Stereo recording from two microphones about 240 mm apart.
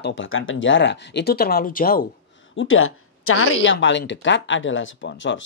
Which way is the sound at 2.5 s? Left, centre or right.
Left.